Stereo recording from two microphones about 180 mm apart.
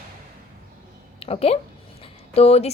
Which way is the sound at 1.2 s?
35° left (ahead or behind).